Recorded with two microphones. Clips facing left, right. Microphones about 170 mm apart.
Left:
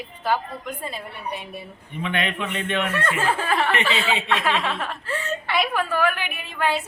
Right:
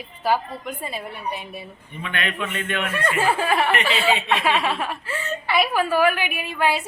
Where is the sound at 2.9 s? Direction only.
15° right (ahead or behind).